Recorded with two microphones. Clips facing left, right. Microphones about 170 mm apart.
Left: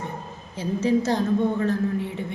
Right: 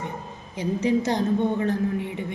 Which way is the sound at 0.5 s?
15° right (ahead or behind).